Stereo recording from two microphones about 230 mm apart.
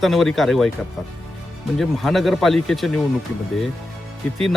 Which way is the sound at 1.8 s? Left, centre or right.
Centre.